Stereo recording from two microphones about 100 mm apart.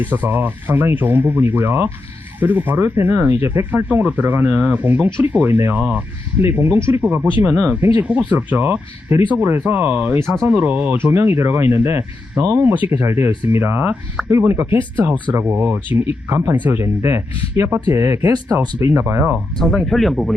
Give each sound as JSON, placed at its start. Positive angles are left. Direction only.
{"t": 0.0, "sound": "speech", "side_deg": -20}
{"t": 12.7, "sound": "speech", "side_deg": -15}
{"t": 13.1, "sound": "speech", "side_deg": -25}
{"t": 17.7, "sound": "speech", "side_deg": -40}
{"t": 19.5, "sound": "speech", "side_deg": 5}